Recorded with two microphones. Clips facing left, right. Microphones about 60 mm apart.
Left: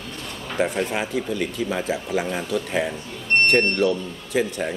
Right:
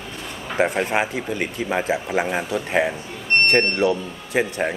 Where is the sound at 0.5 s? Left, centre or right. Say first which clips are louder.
Right 3 dB; right.